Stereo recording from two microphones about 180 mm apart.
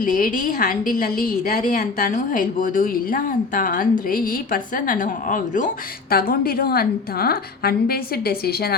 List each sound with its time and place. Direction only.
0.0 s a woman's voice: 45° left (ahead or behind)